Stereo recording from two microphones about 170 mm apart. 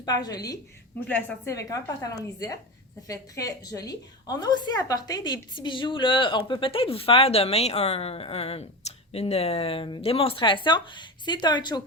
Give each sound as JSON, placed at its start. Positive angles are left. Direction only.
{"t": 0.0, "sound": "a woman's voice", "side_deg": 25}
{"t": 0.9, "sound": "a woman's voice", "side_deg": 10}
{"t": 1.5, "sound": "a woman's voice", "side_deg": 20}